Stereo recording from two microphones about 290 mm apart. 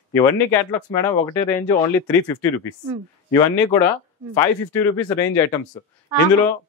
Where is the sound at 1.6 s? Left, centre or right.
Centre.